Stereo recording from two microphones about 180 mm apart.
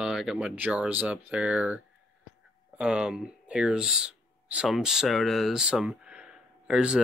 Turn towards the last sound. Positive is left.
turn(degrees=-5)  # may be behind; listen again after turning